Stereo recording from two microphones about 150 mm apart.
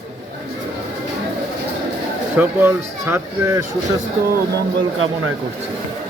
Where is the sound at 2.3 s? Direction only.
15° right (ahead or behind).